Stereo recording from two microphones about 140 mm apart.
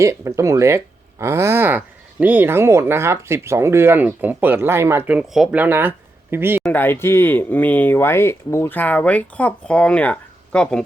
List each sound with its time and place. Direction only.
0.0 s speech: 20° right (ahead or behind)
6.7 s speech: 15° left (ahead or behind)